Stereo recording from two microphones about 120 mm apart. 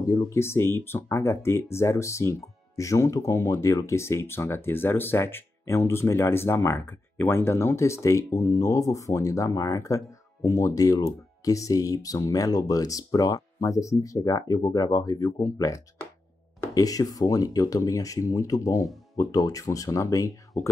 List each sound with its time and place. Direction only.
0.0 s speech: 25° left (ahead or behind)